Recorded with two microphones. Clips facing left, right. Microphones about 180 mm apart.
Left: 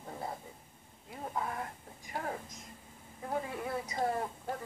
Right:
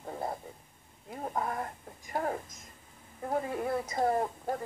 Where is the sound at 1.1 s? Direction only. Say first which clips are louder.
Right 4 dB; 45° right (ahead or behind).